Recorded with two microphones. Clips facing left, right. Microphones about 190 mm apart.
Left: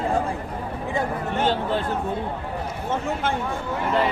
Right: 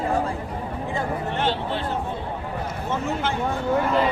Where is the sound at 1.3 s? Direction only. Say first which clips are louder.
Left 4 dB; 45° left (ahead or behind).